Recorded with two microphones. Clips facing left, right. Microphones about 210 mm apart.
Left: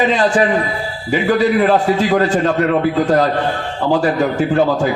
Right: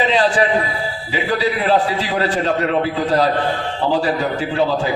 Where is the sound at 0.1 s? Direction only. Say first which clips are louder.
Left 2 dB; 50° left (ahead or behind).